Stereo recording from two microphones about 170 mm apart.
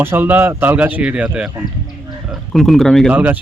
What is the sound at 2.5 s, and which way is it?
Speech, centre (ahead or behind).